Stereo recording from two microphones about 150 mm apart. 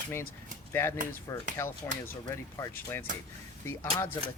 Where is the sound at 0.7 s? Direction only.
15° left (ahead or behind).